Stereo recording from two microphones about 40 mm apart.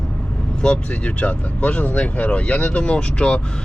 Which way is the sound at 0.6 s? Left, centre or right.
Left.